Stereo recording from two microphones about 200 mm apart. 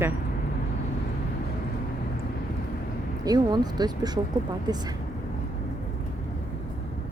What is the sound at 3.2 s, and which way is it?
Speech, 20° right (ahead or behind).